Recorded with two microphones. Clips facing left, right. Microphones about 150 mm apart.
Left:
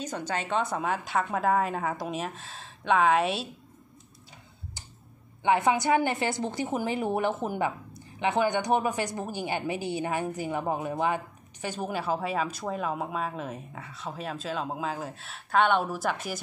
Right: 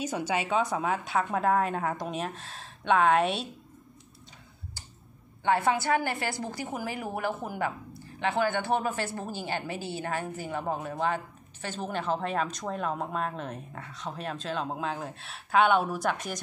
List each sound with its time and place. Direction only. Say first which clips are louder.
0.0 s a woman's voice: right 2 dB; 10° right (ahead or behind)
5.4 s a woman's voice: left 2 dB; 15° left (ahead or behind); by 16.3 s centre (ahead or behind)